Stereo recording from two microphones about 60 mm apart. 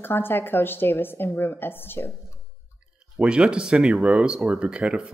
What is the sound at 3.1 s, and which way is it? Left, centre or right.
Speech, centre.